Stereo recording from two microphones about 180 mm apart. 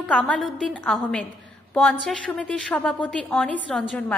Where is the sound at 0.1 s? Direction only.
5° left (ahead or behind).